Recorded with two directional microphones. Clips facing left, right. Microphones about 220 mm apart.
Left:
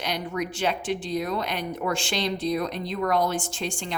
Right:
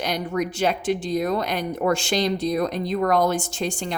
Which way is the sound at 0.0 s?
45° right (ahead or behind).